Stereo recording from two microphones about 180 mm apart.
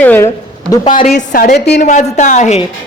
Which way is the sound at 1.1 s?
50° left (ahead or behind).